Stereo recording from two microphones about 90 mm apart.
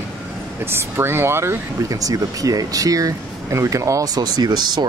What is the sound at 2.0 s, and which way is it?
Speech, 40° right (ahead or behind).